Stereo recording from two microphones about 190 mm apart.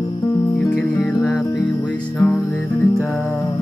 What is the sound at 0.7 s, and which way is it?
Music, 5° left (ahead or behind).